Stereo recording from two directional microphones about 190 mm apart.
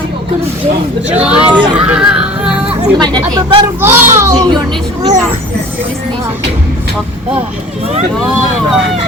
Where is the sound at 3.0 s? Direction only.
20° right (ahead or behind).